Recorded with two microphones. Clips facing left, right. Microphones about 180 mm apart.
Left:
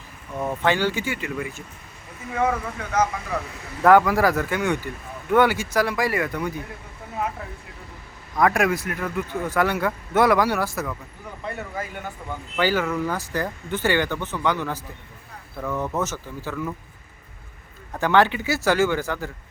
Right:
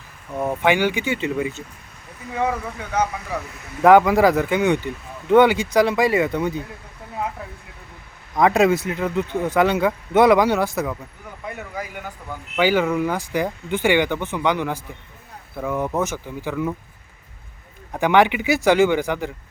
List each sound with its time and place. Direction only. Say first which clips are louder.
0.3 s speech: right 3 dB; 10° right (ahead or behind)
3.8 s speech: right 3 dB; 20° right (ahead or behind)
8.4 s speech: right 4 dB; 20° right (ahead or behind)
17.9 s speech: right 3 dB; 15° right (ahead or behind)